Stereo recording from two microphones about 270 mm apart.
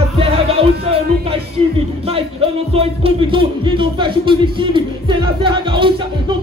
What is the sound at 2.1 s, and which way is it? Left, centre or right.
Music, right.